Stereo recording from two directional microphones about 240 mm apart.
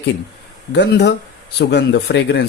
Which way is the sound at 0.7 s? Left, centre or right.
Left.